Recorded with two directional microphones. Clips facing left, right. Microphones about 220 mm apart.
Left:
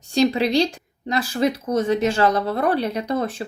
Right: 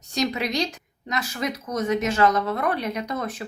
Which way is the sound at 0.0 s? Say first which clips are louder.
Left 7 dB; 30° left (ahead or behind).